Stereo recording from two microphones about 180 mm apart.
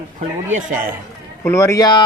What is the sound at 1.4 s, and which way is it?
Speech, 15° left (ahead or behind).